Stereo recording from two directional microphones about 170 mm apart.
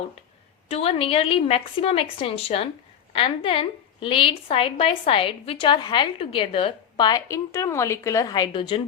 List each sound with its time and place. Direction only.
0.7 s a woman's voice: 35° left (ahead or behind)